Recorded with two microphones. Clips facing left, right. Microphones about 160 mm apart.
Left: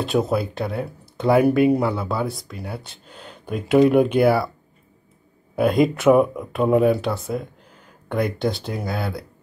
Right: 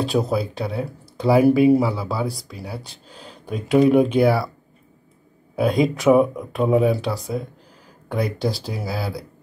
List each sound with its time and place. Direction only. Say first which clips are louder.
0.0 s speech: even; centre (ahead or behind)
5.6 s speech: left 1 dB; centre (ahead or behind)